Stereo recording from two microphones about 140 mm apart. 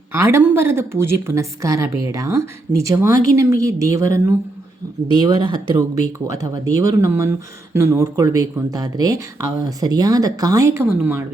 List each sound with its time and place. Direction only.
0.1 s speech: 20° right (ahead or behind)